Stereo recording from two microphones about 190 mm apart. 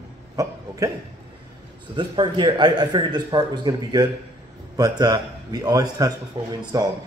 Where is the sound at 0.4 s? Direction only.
15° right (ahead or behind).